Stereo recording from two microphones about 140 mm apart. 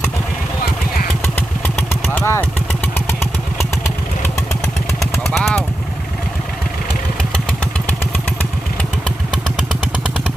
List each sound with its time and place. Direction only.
1.4 s motorcycle: 15° left (ahead or behind)
5.3 s vehicle: 5° left (ahead or behind)
8.1 s motorcycle: 10° left (ahead or behind)